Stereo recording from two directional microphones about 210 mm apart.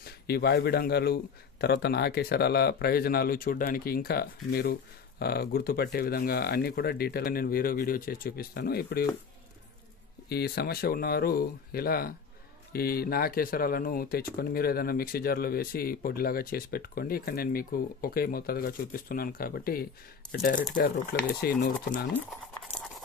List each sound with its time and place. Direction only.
0.0 s speech: 50° left (ahead or behind)
10.2 s speech: 50° left (ahead or behind)
22.1 s patter: centre (ahead or behind)